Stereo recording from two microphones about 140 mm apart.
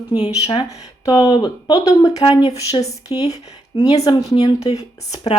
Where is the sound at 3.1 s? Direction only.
15° right (ahead or behind).